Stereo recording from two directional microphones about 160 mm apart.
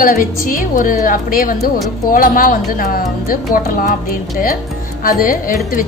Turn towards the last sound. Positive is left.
turn(degrees=60)  # may be behind; listen again after turning